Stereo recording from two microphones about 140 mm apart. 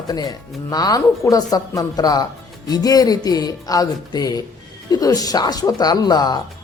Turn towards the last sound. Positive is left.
turn(degrees=30)  # may be behind; listen again after turning